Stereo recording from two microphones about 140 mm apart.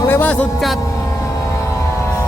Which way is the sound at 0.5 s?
Centre (ahead or behind).